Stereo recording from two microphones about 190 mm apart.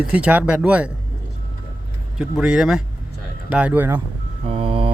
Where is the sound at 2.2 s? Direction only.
5° right (ahead or behind).